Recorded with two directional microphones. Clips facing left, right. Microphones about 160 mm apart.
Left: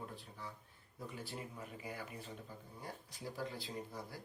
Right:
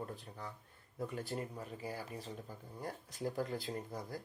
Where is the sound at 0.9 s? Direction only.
50° right (ahead or behind).